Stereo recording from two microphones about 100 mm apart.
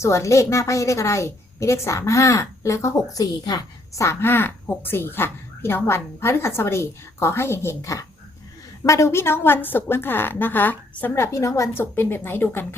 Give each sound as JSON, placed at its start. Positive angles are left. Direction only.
{"t": 0.0, "sound": "a woman's voice", "side_deg": 30}
{"t": 11.2, "sound": "a woman's voice", "side_deg": 30}